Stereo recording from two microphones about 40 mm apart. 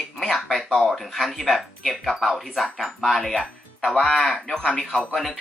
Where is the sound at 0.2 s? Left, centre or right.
Centre.